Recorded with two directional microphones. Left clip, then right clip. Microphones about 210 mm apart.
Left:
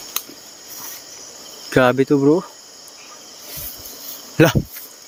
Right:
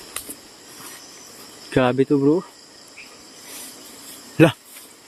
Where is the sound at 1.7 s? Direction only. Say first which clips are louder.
Left 4 dB; 15° left (ahead or behind).